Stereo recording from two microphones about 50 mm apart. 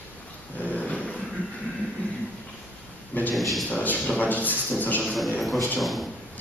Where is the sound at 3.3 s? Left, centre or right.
Centre.